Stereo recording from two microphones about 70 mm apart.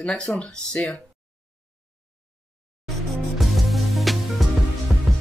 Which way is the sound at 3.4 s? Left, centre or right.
Centre.